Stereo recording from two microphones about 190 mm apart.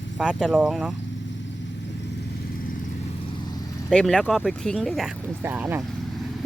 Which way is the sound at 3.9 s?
5° left (ahead or behind).